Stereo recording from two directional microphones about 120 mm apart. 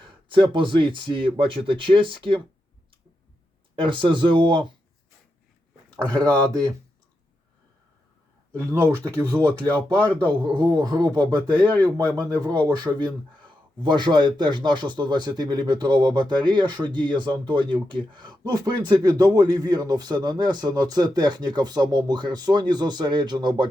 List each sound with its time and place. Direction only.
0.0 s speech: 45° right (ahead or behind)
3.8 s speech: 45° right (ahead or behind)
6.1 s speech: 35° right (ahead or behind)
8.7 s speech: 20° right (ahead or behind)
10.2 s speech: 40° right (ahead or behind)
11.7 s speech: 15° left (ahead or behind)
12.1 s speech: 35° right (ahead or behind)